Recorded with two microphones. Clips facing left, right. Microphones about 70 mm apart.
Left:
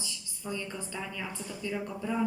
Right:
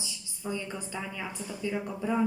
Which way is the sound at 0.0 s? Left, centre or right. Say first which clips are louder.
Right 2 dB; centre.